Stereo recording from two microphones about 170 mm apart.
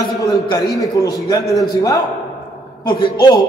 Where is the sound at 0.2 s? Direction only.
20° left (ahead or behind).